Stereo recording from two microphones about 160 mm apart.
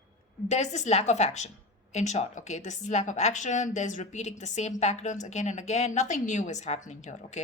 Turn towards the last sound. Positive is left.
turn(degrees=45)  # may be behind; listen again after turning